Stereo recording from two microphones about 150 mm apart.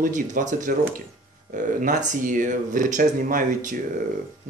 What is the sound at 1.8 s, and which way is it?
Speech, 60° right (ahead or behind).